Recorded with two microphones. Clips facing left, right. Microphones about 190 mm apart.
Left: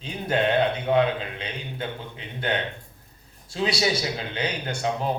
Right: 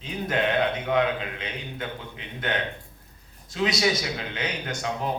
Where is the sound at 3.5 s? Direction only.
30° left (ahead or behind).